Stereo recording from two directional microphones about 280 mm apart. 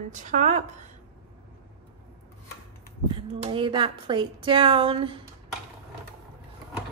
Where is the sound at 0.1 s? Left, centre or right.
Right.